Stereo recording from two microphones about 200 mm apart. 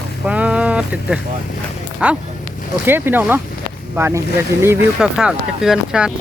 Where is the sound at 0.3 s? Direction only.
5° right (ahead or behind).